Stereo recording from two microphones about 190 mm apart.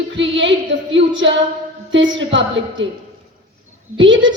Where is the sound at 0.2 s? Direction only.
75° right (ahead or behind).